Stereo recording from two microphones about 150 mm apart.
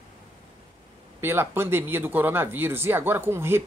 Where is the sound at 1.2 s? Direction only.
15° right (ahead or behind).